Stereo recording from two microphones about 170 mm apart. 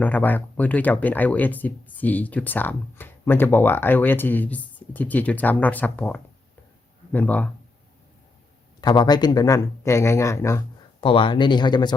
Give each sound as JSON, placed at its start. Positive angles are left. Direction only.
{"t": 0.0, "sound": "speech", "side_deg": 10}
{"t": 8.8, "sound": "speech", "side_deg": 25}
{"t": 11.0, "sound": "speech", "side_deg": 30}